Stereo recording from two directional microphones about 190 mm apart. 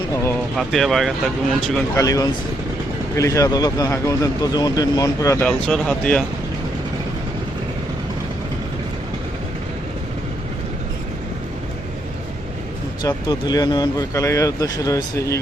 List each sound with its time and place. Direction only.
0.5 s speech: centre (ahead or behind)
2.0 s speech: 20° left (ahead or behind)
5.5 s speech: 5° left (ahead or behind)
13.0 s speech: 20° left (ahead or behind)